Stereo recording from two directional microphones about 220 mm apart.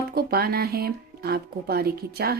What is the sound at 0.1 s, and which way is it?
Speech, 45° right (ahead or behind).